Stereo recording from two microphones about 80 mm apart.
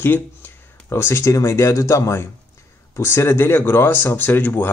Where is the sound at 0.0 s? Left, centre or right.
Left.